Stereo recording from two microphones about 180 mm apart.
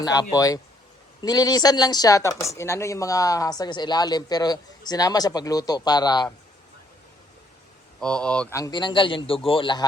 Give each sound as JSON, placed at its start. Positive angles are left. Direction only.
{"t": 0.0, "sound": "speech", "side_deg": 20}
{"t": 8.0, "sound": "speech", "side_deg": 5}
{"t": 8.5, "sound": "speech", "side_deg": 20}